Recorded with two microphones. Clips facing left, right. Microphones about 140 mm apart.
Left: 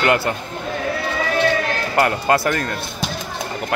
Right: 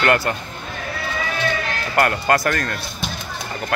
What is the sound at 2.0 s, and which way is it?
Speech, 20° left (ahead or behind).